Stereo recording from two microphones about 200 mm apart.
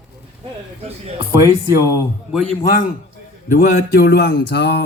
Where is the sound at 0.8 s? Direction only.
30° right (ahead or behind).